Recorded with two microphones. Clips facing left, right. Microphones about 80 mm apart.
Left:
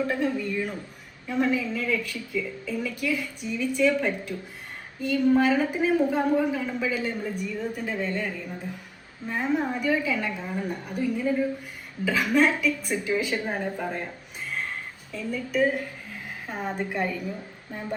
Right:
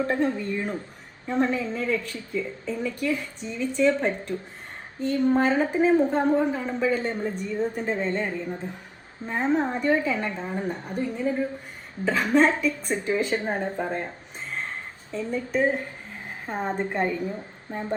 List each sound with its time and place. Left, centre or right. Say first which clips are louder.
0.1 s a woman's voice: right 2 dB; right
14.5 s a sound: even; right
17.7 s speech: right 4 dB; right